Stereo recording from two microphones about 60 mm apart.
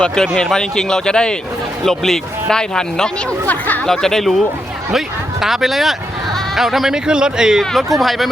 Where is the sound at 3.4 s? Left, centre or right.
Left.